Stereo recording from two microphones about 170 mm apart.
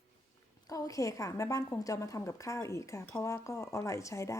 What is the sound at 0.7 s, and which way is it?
A woman's voice, 20° left (ahead or behind).